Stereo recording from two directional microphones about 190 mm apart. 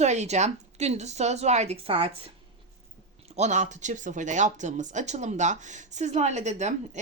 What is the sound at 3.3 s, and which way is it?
Speech, 40° right (ahead or behind).